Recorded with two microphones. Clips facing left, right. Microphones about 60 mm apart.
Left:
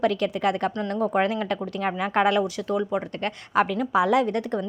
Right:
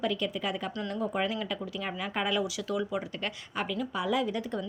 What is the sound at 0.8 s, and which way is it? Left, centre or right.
A woman's voice, left.